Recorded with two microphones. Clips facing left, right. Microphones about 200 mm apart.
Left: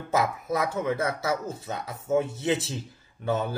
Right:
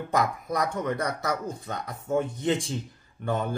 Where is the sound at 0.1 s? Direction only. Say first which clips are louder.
Left 1 dB; 5° left (ahead or behind).